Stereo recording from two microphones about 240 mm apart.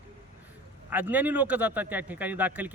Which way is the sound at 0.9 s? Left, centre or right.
Centre.